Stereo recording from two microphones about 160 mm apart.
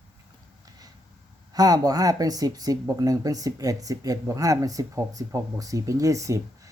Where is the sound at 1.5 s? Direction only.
25° right (ahead or behind).